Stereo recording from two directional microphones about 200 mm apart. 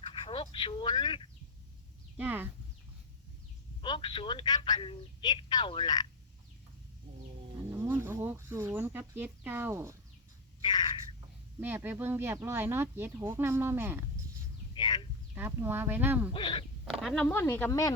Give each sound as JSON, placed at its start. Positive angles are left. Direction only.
{"t": 0.1, "sound": "speech", "side_deg": 25}
{"t": 2.1, "sound": "speech", "side_deg": -10}
{"t": 3.8, "sound": "speech", "side_deg": 25}
{"t": 7.7, "sound": "speech", "side_deg": -10}
{"t": 10.6, "sound": "a sound", "side_deg": 20}
{"t": 11.6, "sound": "speech", "side_deg": -10}
{"t": 14.8, "sound": "a sound", "side_deg": 20}
{"t": 15.4, "sound": "speech", "side_deg": -10}
{"t": 16.3, "sound": "speech", "side_deg": 25}
{"t": 16.8, "sound": "speech", "side_deg": 0}